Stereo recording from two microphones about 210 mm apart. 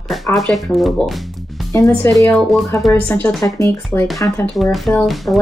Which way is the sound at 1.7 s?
15° left (ahead or behind).